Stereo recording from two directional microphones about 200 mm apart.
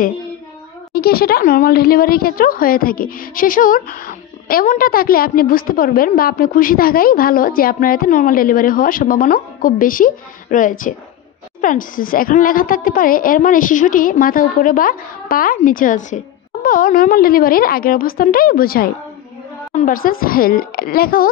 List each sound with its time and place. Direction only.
0.9 s speech: 50° left (ahead or behind)